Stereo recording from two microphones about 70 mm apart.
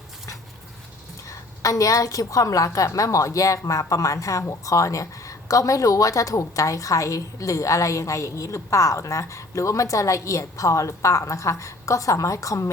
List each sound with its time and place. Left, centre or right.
1.3 s a woman's voice: left